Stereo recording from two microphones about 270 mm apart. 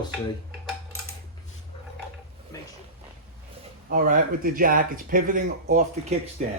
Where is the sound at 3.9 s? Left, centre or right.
Right.